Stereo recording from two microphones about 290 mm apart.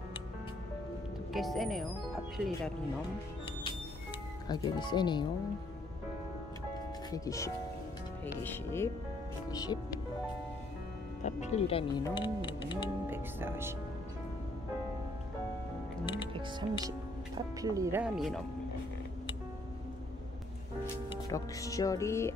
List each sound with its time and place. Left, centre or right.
1.3 s speech: centre
4.5 s speech: centre
7.1 s speech: centre
11.2 s speech: left
13.1 s speech: centre
16.3 s speech: centre
20.8 s speech: centre